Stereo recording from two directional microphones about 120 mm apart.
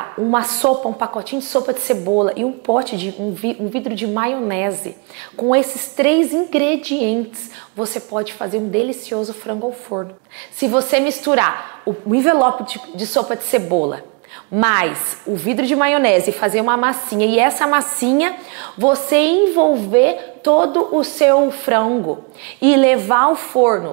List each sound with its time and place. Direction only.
0.0 s a woman's voice: 25° right (ahead or behind)
2.9 s a woman's voice: 20° right (ahead or behind)
7.7 s a woman's voice: 30° right (ahead or behind)
22.6 s a woman's voice: 20° right (ahead or behind)